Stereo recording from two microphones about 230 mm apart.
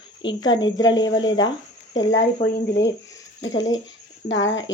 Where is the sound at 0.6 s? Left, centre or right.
Centre.